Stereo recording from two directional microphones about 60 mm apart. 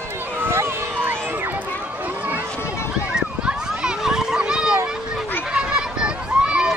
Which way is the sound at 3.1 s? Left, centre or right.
Centre.